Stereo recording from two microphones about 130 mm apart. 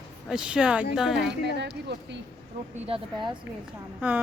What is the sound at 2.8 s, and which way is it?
Speech, 45° right (ahead or behind).